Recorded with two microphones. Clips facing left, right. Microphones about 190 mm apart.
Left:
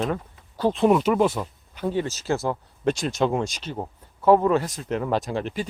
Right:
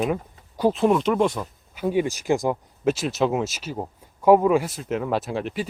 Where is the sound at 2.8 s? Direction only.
5° right (ahead or behind).